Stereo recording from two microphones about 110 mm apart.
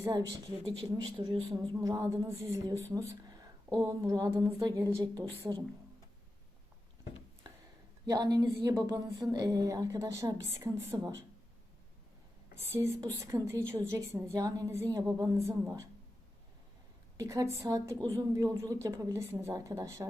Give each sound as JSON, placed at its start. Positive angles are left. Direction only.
{"t": 0.0, "sound": "a woman's voice", "side_deg": -25}
{"t": 1.2, "sound": "speech", "side_deg": -45}
{"t": 1.8, "sound": "a woman's voice", "side_deg": -30}
{"t": 8.0, "sound": "a woman's voice", "side_deg": -35}
{"t": 12.5, "sound": "a woman's voice", "side_deg": -25}
{"t": 17.2, "sound": "a woman's voice", "side_deg": -30}